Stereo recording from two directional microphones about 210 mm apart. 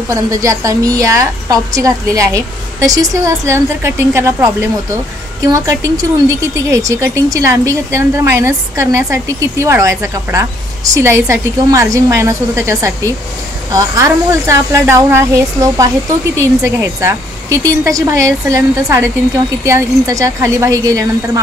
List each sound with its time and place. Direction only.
0.1 s speech: 15° right (ahead or behind)